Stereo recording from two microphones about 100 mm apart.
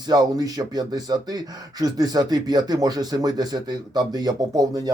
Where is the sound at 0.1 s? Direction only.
40° right (ahead or behind).